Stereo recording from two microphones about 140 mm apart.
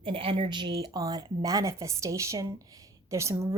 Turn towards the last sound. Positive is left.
turn(degrees=-20)  # may be behind; listen again after turning